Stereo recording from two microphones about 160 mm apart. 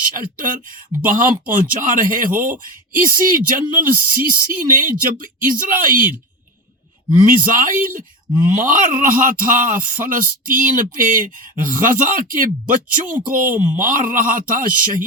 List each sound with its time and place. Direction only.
0.2 s speech: 60° right (ahead or behind)
7.3 s speech: 55° right (ahead or behind)